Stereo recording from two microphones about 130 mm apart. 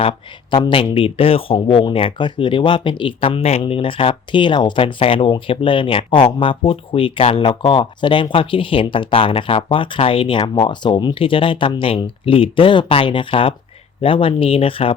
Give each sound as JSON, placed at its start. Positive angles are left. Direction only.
{"t": 0.5, "sound": "speech", "side_deg": 40}